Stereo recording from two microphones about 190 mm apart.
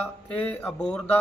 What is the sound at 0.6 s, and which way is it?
Speech, 5° left (ahead or behind).